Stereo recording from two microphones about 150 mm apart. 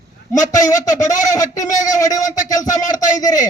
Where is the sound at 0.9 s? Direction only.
55° left (ahead or behind).